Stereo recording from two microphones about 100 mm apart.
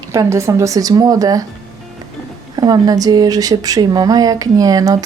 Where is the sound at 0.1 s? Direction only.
30° right (ahead or behind).